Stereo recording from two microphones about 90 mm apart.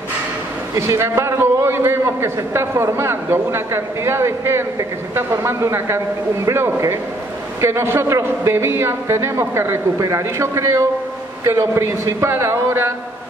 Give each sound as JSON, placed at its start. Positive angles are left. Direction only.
{"t": 0.7, "sound": "a man's voice", "side_deg": -30}